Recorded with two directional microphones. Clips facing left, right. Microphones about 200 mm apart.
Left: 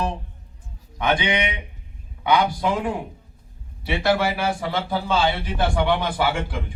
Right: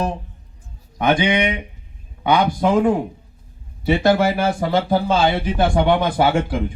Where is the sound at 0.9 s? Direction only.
45° right (ahead or behind).